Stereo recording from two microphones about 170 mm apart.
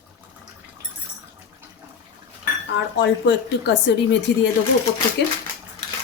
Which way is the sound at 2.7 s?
90° left.